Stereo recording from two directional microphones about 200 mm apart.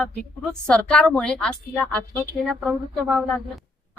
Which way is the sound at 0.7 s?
5° left (ahead or behind).